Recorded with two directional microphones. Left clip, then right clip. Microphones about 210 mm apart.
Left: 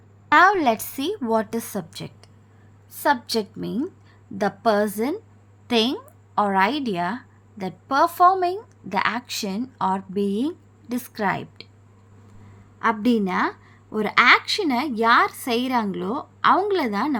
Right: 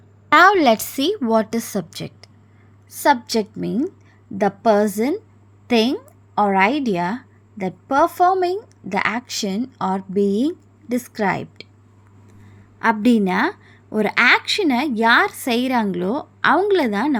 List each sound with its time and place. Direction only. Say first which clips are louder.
0.3 s a woman's voice: right 4 dB; 25° right (ahead or behind)
12.8 s a woman's voice: right 4 dB; 20° right (ahead or behind)